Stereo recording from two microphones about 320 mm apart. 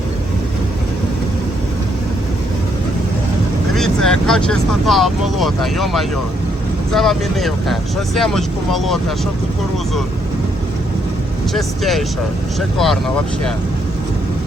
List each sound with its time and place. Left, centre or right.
3.8 s speech: centre
11.5 s speech: centre